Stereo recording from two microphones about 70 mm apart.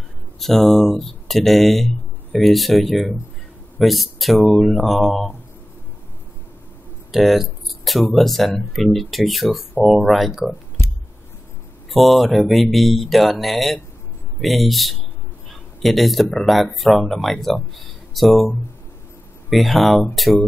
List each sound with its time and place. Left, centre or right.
0.4 s speech: centre
7.1 s speech: centre
11.9 s speech: centre
19.5 s speech: centre